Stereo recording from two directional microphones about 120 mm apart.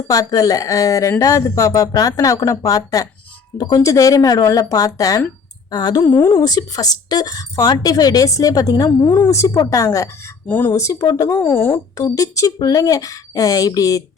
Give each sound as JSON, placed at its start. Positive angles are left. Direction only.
{"t": 0.1, "sound": "speech", "side_deg": 30}
{"t": 9.3, "sound": "speech", "side_deg": 25}
{"t": 10.4, "sound": "speech", "side_deg": 15}
{"t": 10.7, "sound": "speech", "side_deg": 25}
{"t": 11.5, "sound": "speech", "side_deg": 20}